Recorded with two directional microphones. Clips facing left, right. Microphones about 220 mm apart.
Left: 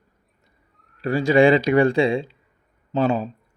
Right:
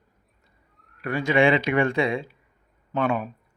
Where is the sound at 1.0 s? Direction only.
30° left (ahead or behind).